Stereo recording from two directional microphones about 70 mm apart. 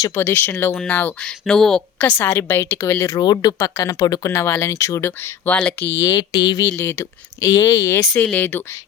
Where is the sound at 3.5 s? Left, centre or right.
Left.